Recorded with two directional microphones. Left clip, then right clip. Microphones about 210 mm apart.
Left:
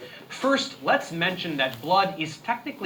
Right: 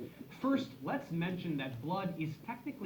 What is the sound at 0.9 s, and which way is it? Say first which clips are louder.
Speech: left 16 dB; 40° left (ahead or behind).